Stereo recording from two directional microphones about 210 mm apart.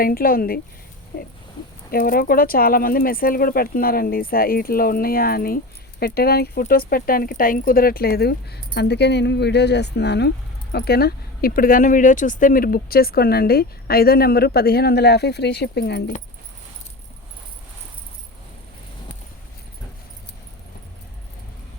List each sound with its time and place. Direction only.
0.0 s speech: 45° left (ahead or behind)